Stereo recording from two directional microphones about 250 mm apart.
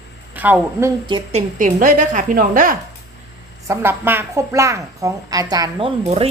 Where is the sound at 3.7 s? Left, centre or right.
Centre.